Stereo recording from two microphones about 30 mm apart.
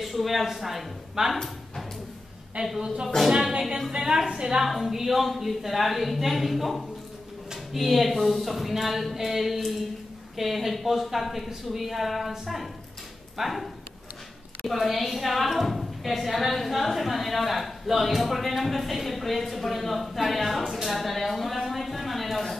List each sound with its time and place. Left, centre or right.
0.0 s a woman's voice: centre
2.6 s a woman's voice: right
3.3 s speech: centre
3.9 s a woman's voice: right
4.6 s a woman's voice: centre
14.7 s a woman's voice: centre